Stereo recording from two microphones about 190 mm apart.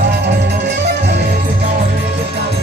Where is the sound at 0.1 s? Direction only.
60° right (ahead or behind).